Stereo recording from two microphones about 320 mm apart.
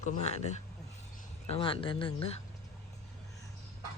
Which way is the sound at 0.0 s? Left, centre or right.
Centre.